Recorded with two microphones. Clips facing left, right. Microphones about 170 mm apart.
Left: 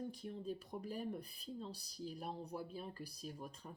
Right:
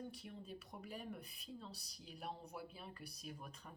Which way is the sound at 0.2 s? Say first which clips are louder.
Left 7 dB; 35° left (ahead or behind).